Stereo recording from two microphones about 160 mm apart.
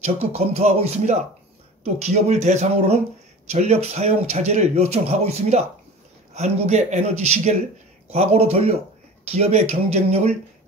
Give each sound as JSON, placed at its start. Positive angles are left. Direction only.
{"t": 0.0, "sound": "speech", "side_deg": -40}